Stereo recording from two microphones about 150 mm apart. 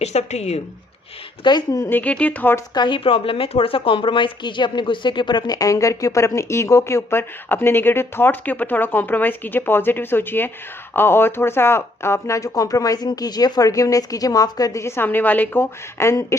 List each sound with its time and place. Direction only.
0.0 s a woman's voice: 50° left (ahead or behind)
1.5 s speech: 25° left (ahead or behind)
2.7 s speech: 30° left (ahead or behind)